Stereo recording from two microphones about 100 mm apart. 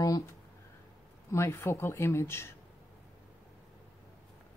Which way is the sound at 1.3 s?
25° left (ahead or behind).